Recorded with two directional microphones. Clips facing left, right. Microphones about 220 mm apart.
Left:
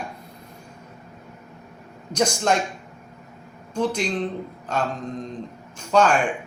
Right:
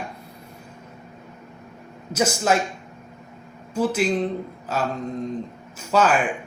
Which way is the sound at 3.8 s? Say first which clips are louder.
Right 2 dB; 5° right (ahead or behind).